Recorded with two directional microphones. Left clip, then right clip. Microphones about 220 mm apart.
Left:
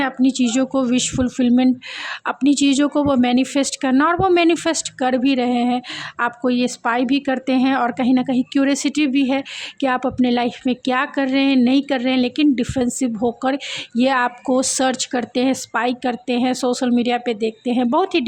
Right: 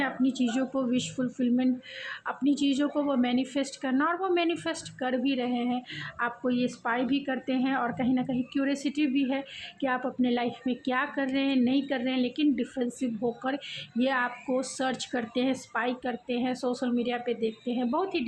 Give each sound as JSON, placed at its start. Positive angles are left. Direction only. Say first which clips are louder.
{"t": 0.0, "sound": "speech", "louder": "left 10 dB", "side_deg": 50}